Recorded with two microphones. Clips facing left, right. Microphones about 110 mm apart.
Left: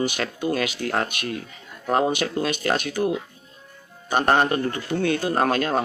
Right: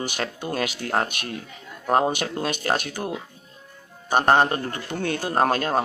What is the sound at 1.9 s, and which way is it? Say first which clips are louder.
Speech: even; 40° right (ahead or behind).